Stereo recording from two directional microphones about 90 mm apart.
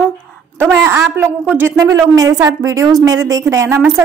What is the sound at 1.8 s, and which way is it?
Speech, 35° right (ahead or behind).